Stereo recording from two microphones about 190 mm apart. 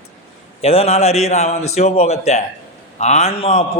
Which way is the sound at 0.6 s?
30° left (ahead or behind).